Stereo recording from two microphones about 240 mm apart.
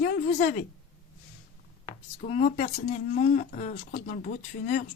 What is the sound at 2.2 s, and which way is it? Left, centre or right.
Speech, left.